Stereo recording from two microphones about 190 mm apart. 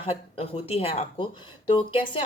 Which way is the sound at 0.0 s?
30° left (ahead or behind).